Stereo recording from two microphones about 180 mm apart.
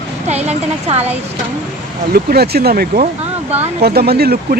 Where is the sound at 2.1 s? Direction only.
60° right (ahead or behind).